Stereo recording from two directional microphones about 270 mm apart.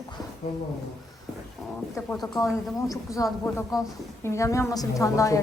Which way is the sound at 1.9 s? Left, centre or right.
Centre.